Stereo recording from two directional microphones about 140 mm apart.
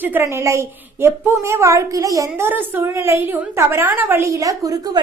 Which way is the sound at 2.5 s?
15° right (ahead or behind).